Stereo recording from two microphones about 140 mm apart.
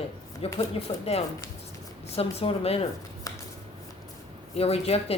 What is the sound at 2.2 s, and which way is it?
Speech, 45° left (ahead or behind).